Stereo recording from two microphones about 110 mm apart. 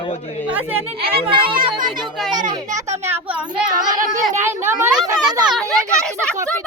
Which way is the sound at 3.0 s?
15° right (ahead or behind).